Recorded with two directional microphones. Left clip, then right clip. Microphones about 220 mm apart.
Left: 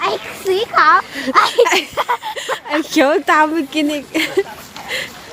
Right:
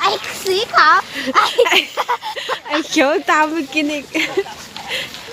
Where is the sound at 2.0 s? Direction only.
40° left (ahead or behind).